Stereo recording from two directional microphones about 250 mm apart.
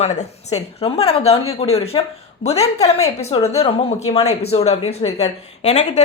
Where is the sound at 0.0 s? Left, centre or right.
Left.